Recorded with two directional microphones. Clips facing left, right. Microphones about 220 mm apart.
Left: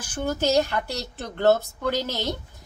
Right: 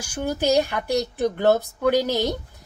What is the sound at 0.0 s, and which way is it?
Speech, 10° right (ahead or behind).